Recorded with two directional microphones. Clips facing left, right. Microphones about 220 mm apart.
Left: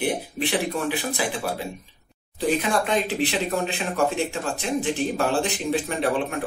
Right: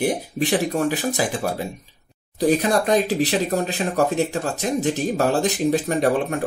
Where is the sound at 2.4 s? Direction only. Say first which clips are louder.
Right 4 dB; 40° right (ahead or behind).